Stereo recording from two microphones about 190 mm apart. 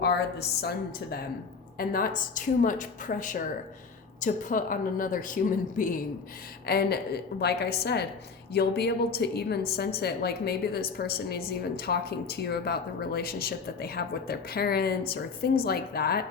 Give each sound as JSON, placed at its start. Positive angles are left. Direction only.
{"t": 0.0, "sound": "a woman's voice", "side_deg": 60}
{"t": 6.7, "sound": "a woman's voice", "side_deg": 55}